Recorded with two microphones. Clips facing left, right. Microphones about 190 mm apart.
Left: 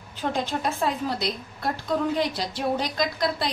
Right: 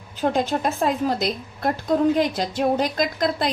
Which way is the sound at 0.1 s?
45° right (ahead or behind).